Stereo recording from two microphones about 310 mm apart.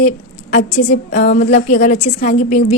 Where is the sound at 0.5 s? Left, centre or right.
Left.